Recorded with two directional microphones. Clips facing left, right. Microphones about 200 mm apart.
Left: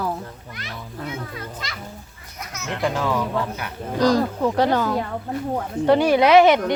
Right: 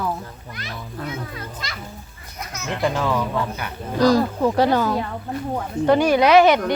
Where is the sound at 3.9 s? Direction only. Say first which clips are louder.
Right 2 dB; 10° right (ahead or behind).